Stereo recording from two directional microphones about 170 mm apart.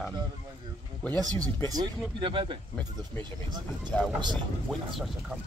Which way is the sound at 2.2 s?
30° right (ahead or behind).